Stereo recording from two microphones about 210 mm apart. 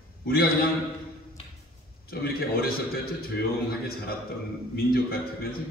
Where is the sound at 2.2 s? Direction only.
45° left (ahead or behind).